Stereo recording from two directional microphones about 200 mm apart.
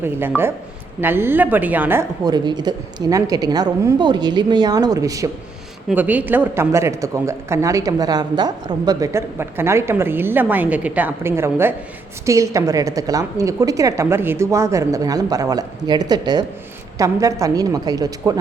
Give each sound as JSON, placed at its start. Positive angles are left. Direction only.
{"t": 0.0, "sound": "a woman's voice", "side_deg": -10}